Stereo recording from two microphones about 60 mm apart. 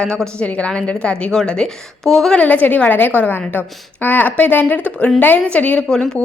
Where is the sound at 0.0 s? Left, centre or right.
Centre.